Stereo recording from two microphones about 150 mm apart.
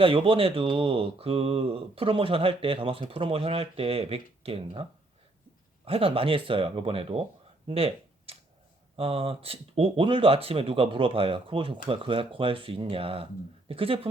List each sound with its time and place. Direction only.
0.0 s speech: 35° right (ahead or behind)
7.7 s a sound: 40° right (ahead or behind)
9.0 s speech: 40° right (ahead or behind)